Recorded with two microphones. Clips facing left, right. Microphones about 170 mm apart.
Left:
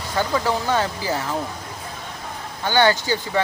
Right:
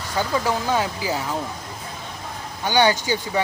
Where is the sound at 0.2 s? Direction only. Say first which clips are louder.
Left 1 dB; 10° right (ahead or behind).